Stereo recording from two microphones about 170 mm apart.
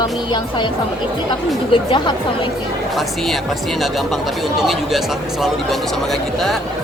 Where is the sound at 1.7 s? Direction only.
30° left (ahead or behind).